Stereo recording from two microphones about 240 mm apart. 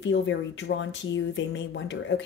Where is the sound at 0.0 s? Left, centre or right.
Left.